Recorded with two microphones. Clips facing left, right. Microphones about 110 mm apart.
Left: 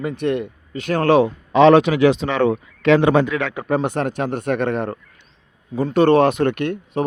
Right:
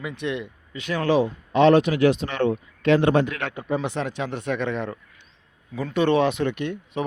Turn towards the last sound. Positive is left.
turn(degrees=55)  # may be behind; listen again after turning